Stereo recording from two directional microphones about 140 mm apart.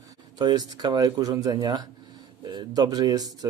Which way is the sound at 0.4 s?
25° right (ahead or behind).